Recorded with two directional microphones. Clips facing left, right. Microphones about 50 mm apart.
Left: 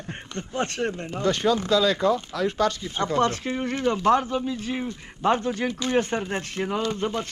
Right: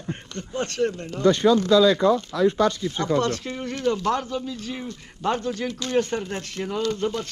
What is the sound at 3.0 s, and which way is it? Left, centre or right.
Speech, left.